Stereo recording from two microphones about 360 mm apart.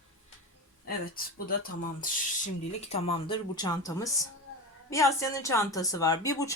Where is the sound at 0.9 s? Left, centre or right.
Left.